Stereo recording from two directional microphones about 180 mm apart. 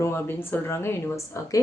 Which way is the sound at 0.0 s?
15° left (ahead or behind).